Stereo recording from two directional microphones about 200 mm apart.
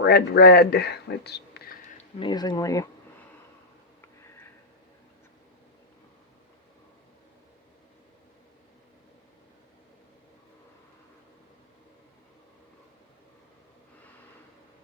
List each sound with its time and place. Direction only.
0.0 s speech: 50° left (ahead or behind)
2.1 s speech: 20° left (ahead or behind)